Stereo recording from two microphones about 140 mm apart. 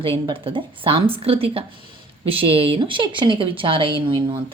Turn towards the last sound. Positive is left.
turn(degrees=-35)  # may be behind; listen again after turning